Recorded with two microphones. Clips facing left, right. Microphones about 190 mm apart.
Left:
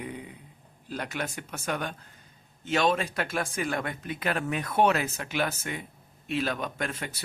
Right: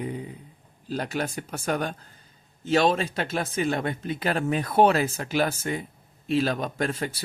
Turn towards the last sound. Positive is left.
turn(degrees=-35)  # may be behind; listen again after turning